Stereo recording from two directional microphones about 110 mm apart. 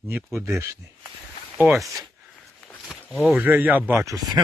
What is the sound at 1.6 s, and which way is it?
Speech, 15° right (ahead or behind).